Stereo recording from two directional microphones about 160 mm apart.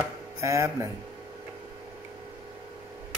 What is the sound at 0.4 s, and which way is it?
Speech, 20° right (ahead or behind).